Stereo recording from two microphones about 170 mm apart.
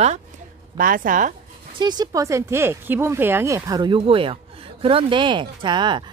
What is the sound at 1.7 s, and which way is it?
Speech, 25° right (ahead or behind).